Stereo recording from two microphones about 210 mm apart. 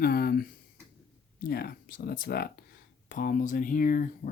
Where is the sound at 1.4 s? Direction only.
45° left (ahead or behind).